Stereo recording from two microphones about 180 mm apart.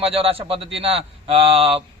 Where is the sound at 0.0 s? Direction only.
30° right (ahead or behind).